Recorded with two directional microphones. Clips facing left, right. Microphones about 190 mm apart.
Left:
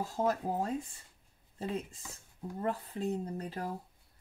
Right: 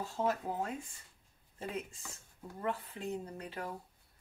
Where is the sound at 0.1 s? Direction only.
40° left (ahead or behind).